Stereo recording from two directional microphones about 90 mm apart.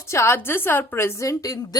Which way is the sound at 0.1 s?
30° left (ahead or behind).